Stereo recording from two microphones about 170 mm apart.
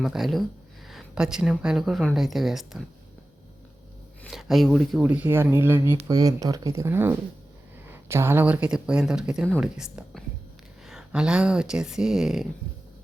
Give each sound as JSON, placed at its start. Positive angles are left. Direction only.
{"t": 0.0, "sound": "speech", "side_deg": 0}
{"t": 4.3, "sound": "speech", "side_deg": 0}